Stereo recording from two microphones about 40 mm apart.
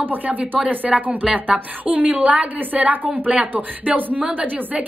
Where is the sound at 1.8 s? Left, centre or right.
Right.